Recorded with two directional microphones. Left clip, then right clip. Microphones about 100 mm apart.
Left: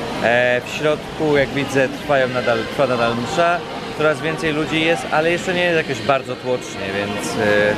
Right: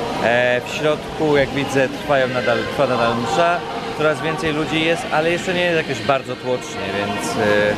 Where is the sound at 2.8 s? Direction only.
20° left (ahead or behind).